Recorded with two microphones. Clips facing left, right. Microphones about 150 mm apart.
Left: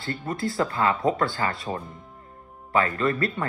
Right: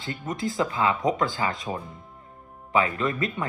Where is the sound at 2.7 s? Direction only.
10° right (ahead or behind).